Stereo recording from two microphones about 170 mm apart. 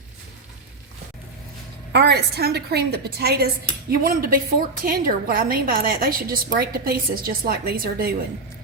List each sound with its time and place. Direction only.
1.9 s a woman's voice: 75° right (ahead or behind)